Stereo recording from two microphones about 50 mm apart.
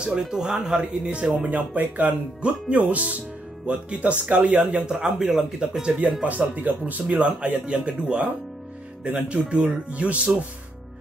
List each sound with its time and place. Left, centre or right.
0.2 s speech: centre
6.2 s speech: right